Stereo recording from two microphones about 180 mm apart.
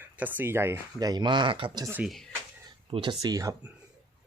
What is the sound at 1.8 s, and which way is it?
Speech, 10° right (ahead or behind).